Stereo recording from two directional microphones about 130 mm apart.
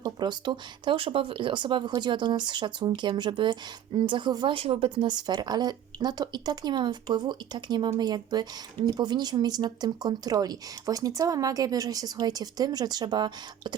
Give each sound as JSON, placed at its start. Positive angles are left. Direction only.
{"t": 0.0, "sound": "speech", "side_deg": -35}
{"t": 4.5, "sound": "speech", "side_deg": -45}
{"t": 5.0, "sound": "speech", "side_deg": -35}